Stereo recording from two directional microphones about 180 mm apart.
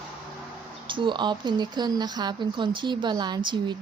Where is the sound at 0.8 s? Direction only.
30° right (ahead or behind).